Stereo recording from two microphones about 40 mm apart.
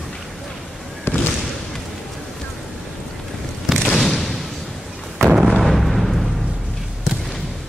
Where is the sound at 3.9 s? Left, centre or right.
Centre.